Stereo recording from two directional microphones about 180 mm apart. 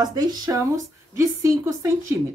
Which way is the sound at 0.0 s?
20° right (ahead or behind).